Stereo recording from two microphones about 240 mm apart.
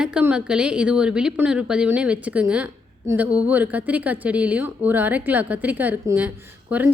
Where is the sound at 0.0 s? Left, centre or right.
Centre.